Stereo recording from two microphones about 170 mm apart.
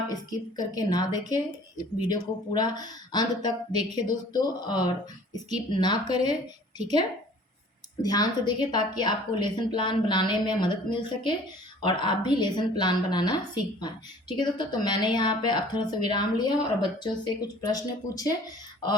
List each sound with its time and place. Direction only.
0.1 s a woman's voice: 25° left (ahead or behind)
8.0 s a woman's voice: 25° left (ahead or behind)